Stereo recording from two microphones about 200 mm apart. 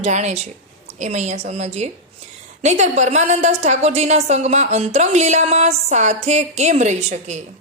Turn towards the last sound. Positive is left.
turn(degrees=-35)  # may be behind; listen again after turning